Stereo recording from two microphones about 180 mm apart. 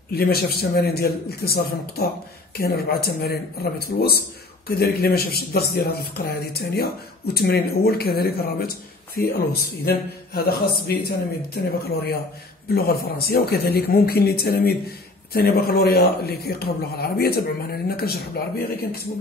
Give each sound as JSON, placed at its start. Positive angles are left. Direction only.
{"t": 0.1, "sound": "speech", "side_deg": 60}
{"t": 4.6, "sound": "speech", "side_deg": 60}